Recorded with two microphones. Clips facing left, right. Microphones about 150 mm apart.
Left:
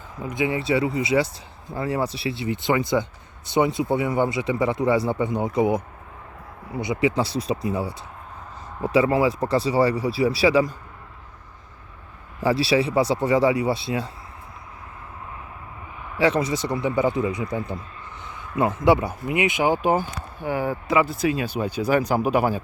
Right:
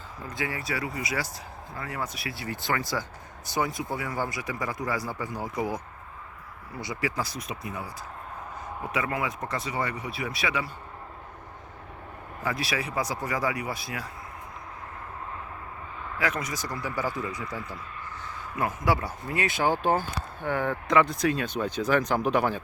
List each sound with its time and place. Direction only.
0.2 s speech: 20° left (ahead or behind)
12.4 s speech: 30° left (ahead or behind)
16.1 s speech: 30° left (ahead or behind); by 22.6 s 10° left (ahead or behind)